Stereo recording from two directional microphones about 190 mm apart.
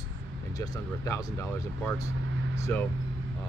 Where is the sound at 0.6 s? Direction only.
15° left (ahead or behind).